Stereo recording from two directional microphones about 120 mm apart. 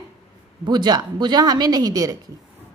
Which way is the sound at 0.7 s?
35° right (ahead or behind).